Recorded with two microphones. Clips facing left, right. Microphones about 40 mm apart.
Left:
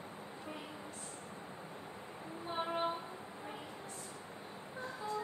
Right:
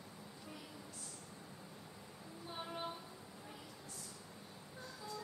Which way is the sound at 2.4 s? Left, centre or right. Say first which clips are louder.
Left 9 dB; left.